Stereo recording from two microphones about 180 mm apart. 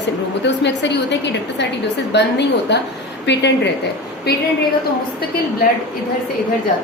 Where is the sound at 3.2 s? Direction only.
70° left (ahead or behind).